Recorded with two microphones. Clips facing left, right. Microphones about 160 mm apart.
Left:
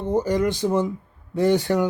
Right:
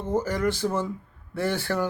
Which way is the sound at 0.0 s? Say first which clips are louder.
Left 4 dB; 20° left (ahead or behind).